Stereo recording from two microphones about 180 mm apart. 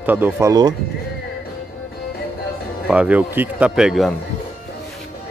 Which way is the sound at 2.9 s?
5° right (ahead or behind).